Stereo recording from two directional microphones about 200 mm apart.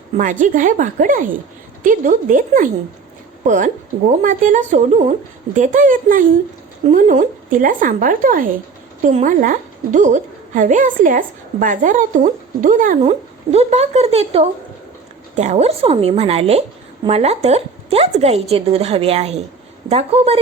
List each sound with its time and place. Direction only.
0.2 s a woman's voice: 40° right (ahead or behind)